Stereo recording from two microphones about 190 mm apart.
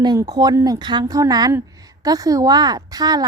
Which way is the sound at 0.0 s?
20° right (ahead or behind).